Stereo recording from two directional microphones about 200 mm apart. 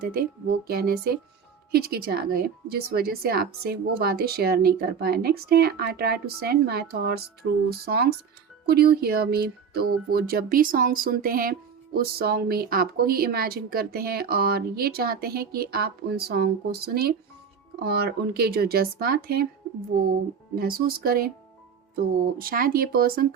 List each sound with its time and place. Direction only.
0.0 s speech: 50° right (ahead or behind)
20.6 s speech: 50° right (ahead or behind)